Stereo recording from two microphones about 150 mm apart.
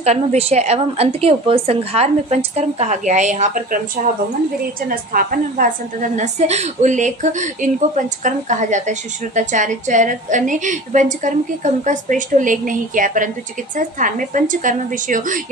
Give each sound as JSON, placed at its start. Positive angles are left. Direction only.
{"t": 0.0, "sound": "a woman's voice", "side_deg": -45}